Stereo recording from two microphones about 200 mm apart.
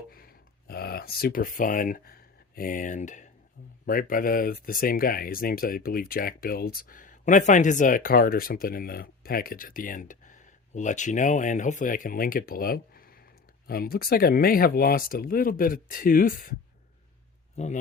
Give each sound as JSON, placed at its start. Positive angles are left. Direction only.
{"t": 0.1, "sound": "a sound", "side_deg": 45}
{"t": 2.6, "sound": "speech", "side_deg": 45}
{"t": 17.6, "sound": "speech", "side_deg": 35}